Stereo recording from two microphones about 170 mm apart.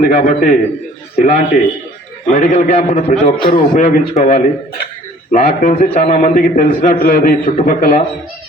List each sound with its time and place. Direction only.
0.1 s a man's voice: 50° left (ahead or behind)
3.8 s a man's voice: 45° left (ahead or behind)
5.3 s a man's voice: 60° left (ahead or behind)
5.7 s a man's voice: 45° left (ahead or behind)